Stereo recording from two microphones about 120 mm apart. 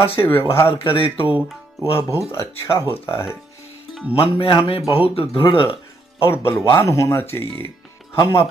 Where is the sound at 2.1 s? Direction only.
25° left (ahead or behind).